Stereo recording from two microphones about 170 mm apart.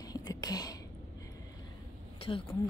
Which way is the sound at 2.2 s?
30° left (ahead or behind).